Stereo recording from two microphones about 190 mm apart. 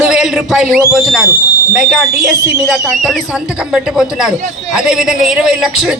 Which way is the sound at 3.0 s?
5° right (ahead or behind).